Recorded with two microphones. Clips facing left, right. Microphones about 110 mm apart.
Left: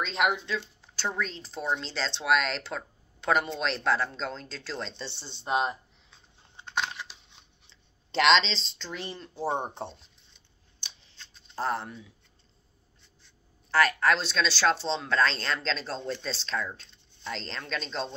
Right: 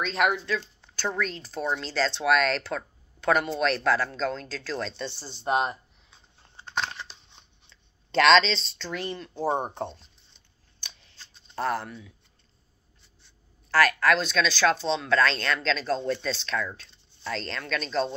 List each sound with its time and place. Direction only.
0.0 s speech: 20° left (ahead or behind)
5.4 s speech: 45° right (ahead or behind)
6.5 s scissors: 10° left (ahead or behind)
7.7 s writing: 20° left (ahead or behind)
8.6 s speech: 70° right (ahead or behind)
9.4 s speech: 10° left (ahead or behind)
10.8 s scissors: 55° right (ahead or behind)
11.5 s speech: 25° left (ahead or behind)
13.7 s speech: 25° left (ahead or behind)